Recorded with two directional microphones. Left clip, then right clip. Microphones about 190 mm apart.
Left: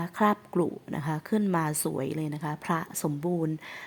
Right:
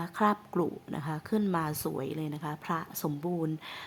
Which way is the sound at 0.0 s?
15° left (ahead or behind).